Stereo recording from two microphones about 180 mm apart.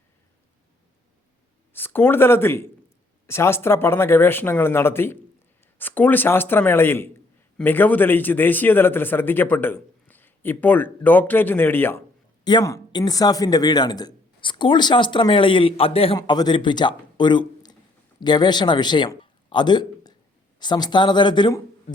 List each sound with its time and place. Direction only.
1.7 s a man's voice: 10° left (ahead or behind)